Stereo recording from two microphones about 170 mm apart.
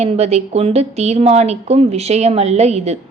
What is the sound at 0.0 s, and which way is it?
A woman's voice, 40° right (ahead or behind).